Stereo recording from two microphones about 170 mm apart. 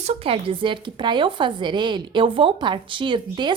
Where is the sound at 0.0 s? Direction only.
35° right (ahead or behind).